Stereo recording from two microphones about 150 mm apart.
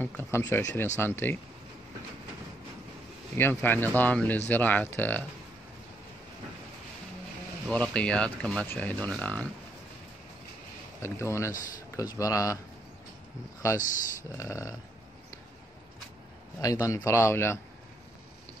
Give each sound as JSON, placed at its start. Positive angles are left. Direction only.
{"t": 0.0, "sound": "speech", "side_deg": 15}
{"t": 3.3, "sound": "speech", "side_deg": 15}
{"t": 7.6, "sound": "speech", "side_deg": 5}
{"t": 11.0, "sound": "speech", "side_deg": 15}
{"t": 13.7, "sound": "speech", "side_deg": 60}
{"t": 14.3, "sound": "speech", "side_deg": 20}
{"t": 16.8, "sound": "speech", "side_deg": 20}